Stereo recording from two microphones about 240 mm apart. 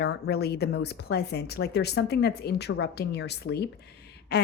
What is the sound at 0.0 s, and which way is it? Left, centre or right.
A woman's voice, left.